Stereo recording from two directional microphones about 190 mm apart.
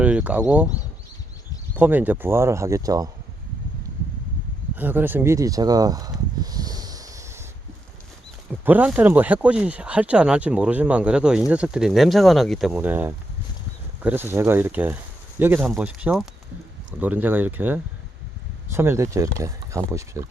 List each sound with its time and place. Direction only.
0.0 s speech: 5° right (ahead or behind)
4.7 s speech: 10° right (ahead or behind)
8.6 s speech: 10° right (ahead or behind)